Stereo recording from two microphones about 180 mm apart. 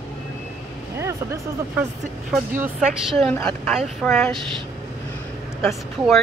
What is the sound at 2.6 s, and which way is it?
Speech, 5° right (ahead or behind).